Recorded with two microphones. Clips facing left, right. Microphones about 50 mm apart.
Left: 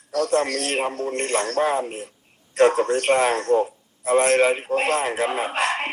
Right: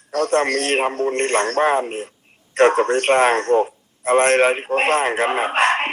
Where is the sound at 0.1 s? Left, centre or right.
Right.